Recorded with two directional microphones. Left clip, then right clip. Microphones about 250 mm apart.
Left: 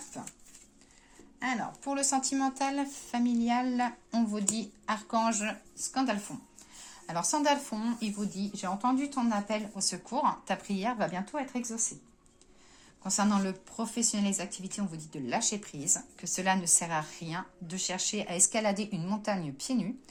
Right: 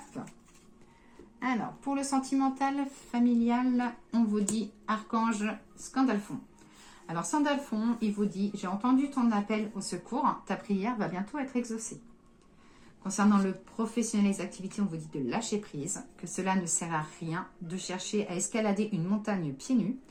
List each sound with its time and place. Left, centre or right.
1.4 s speech: left
13.0 s speech: left